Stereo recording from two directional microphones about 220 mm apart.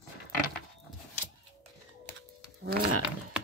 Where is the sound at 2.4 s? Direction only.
45° right (ahead or behind).